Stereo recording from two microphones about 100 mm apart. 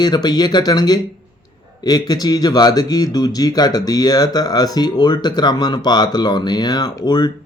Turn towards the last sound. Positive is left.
turn(degrees=45)  # may be behind; listen again after turning